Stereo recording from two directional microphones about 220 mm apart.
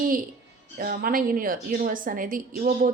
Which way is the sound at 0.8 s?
40° right (ahead or behind).